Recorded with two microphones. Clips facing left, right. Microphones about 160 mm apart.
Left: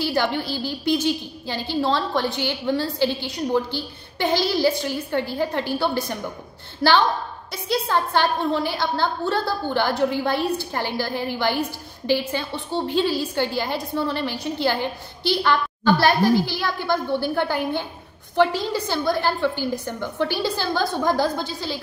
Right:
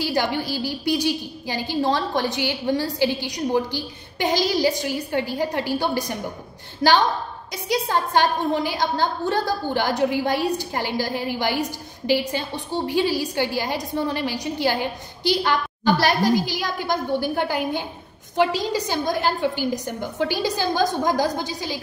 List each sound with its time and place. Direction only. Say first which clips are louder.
0.0 s a woman's voice: even; 15° right (ahead or behind)
7.5 s a woman's voice: even; 15° right (ahead or behind)